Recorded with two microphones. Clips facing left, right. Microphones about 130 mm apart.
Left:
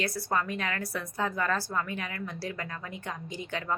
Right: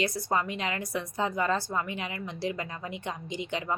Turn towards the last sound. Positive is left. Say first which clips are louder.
# right 2 dB
turn(degrees=-20)  # may be behind; listen again after turning